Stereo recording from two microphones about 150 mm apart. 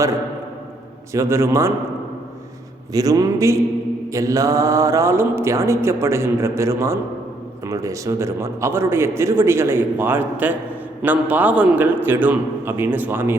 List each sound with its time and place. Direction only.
1.1 s mantra: 20° right (ahead or behind)
2.9 s mantra: 25° right (ahead or behind)
7.6 s a man's voice: 20° right (ahead or behind)